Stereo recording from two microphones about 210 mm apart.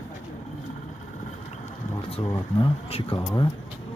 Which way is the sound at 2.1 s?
30° left (ahead or behind).